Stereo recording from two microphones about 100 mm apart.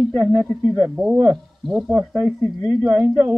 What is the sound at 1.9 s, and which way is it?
A man's voice, 20° right (ahead or behind).